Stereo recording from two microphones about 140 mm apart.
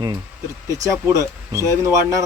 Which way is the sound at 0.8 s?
25° right (ahead or behind).